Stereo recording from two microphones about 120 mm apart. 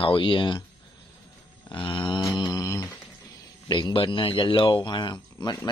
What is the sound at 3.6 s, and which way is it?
Speech, 40° left (ahead or behind).